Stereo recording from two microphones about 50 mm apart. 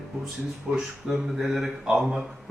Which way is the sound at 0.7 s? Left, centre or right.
Centre.